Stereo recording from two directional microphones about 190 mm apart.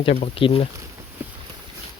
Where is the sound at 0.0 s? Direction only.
30° left (ahead or behind).